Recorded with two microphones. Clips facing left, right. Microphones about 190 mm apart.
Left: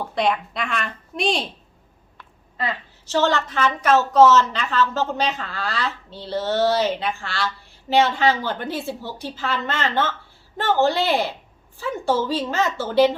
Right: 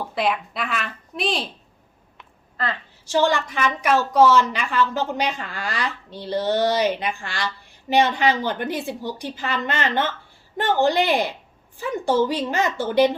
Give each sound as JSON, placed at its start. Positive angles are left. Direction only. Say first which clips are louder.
{"t": 0.1, "sound": "speech", "louder": "left 2 dB", "side_deg": -5}
{"t": 3.1, "sound": "a woman's voice", "louder": "even", "side_deg": -10}